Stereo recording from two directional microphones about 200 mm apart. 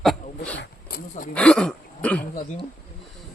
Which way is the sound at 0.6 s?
50° left (ahead or behind).